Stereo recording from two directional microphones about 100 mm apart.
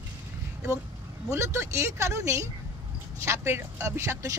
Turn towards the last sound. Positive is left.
turn(degrees=-30)  # may be behind; listen again after turning